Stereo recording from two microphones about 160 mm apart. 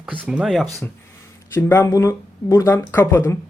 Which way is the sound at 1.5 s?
15° left (ahead or behind).